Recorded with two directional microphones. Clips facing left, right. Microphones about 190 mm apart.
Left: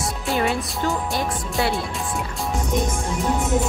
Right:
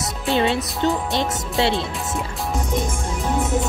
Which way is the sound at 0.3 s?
25° right (ahead or behind).